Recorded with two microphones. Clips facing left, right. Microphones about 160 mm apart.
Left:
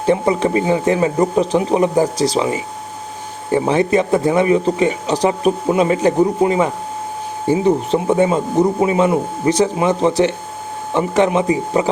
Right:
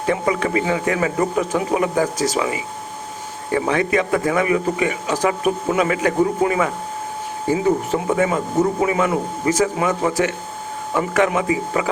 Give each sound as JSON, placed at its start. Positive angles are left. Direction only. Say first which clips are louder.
{"t": 0.0, "sound": "speech", "louder": "left 5 dB", "side_deg": 30}